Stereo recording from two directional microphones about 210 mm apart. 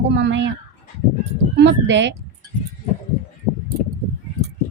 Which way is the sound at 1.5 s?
60° right (ahead or behind).